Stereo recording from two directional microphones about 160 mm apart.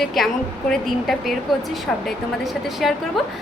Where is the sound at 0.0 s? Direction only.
Centre (ahead or behind).